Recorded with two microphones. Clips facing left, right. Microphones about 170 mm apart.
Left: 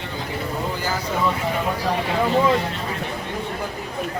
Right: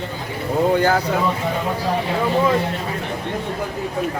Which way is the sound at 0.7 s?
60° right (ahead or behind).